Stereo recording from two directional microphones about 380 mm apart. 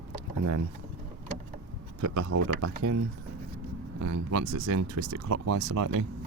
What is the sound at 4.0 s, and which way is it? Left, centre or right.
Speech, right.